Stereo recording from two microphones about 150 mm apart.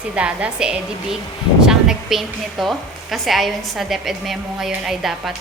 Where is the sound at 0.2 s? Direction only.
10° right (ahead or behind).